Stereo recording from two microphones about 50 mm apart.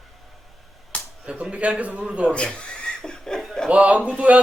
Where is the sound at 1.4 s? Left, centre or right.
Right.